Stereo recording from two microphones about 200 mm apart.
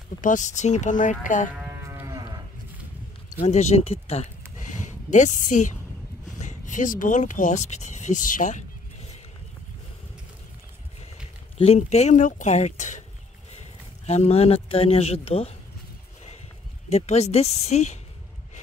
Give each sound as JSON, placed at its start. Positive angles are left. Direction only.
{"t": 0.2, "sound": "speech", "side_deg": 40}
{"t": 1.9, "sound": "moo", "side_deg": -15}
{"t": 3.3, "sound": "speech", "side_deg": 35}
{"t": 4.6, "sound": "a sound", "side_deg": 35}
{"t": 6.4, "sound": "speech", "side_deg": 40}
{"t": 11.5, "sound": "speech", "side_deg": 30}
{"t": 14.0, "sound": "speech", "side_deg": 35}
{"t": 16.9, "sound": "speech", "side_deg": 35}